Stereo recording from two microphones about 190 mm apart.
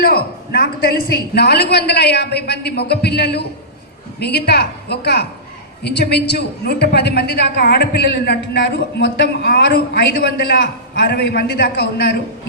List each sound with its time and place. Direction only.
0.0 s a woman's voice: 55° left (ahead or behind)